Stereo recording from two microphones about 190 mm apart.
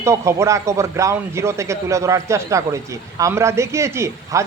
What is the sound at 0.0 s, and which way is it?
A man's voice, 15° right (ahead or behind).